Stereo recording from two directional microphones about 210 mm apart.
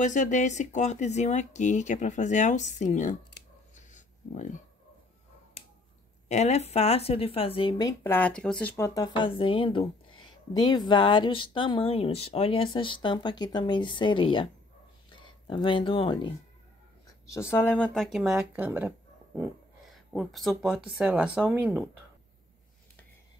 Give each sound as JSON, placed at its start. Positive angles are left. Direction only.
{"t": 0.0, "sound": "speech", "side_deg": 35}
{"t": 3.7, "sound": "a sound", "side_deg": 35}
{"t": 6.2, "sound": "speech", "side_deg": 30}
{"t": 17.3, "sound": "speech", "side_deg": 10}